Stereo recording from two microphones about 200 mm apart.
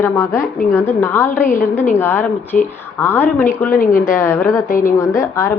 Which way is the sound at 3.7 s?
45° left (ahead or behind).